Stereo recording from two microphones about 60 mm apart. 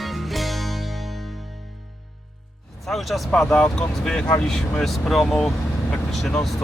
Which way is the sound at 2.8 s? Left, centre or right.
Centre.